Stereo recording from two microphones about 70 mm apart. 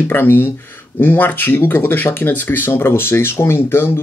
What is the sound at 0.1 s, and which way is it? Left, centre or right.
Speech, left.